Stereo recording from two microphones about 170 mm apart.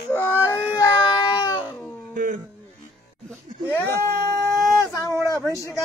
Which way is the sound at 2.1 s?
50° right (ahead or behind).